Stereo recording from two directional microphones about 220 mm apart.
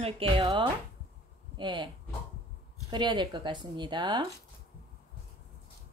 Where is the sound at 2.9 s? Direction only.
20° right (ahead or behind).